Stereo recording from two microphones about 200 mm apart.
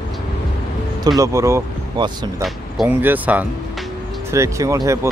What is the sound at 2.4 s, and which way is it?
Speech, 5° right (ahead or behind).